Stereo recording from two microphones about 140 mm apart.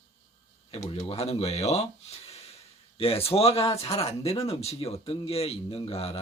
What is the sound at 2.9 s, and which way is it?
Speech, 45° left (ahead or behind).